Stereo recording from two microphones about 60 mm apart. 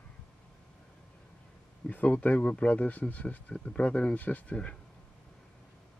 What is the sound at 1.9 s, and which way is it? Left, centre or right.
Speech, left.